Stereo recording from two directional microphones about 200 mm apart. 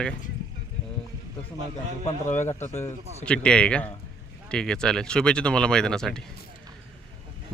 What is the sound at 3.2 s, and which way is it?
Speech, 5° left (ahead or behind).